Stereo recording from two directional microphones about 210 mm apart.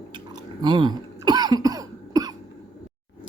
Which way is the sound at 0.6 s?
20° right (ahead or behind).